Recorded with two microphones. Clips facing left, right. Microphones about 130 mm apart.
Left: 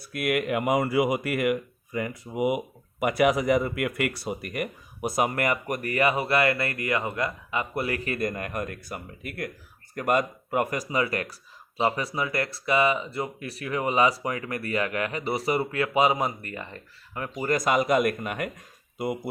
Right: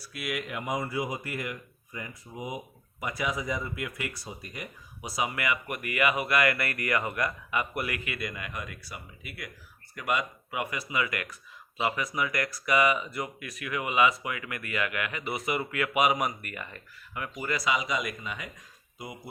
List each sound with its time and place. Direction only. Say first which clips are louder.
0.0 s speech: left 8 dB; 55° left (ahead or behind)